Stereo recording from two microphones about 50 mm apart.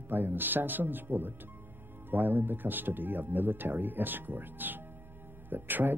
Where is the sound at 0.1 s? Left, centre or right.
Right.